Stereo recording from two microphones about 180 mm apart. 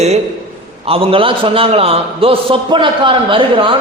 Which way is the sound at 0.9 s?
30° right (ahead or behind).